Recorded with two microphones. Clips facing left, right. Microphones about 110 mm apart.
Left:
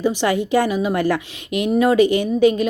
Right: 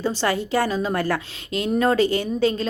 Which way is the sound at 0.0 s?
15° left (ahead or behind).